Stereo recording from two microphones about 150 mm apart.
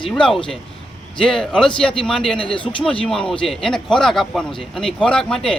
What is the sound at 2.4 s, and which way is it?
Speech, 35° left (ahead or behind).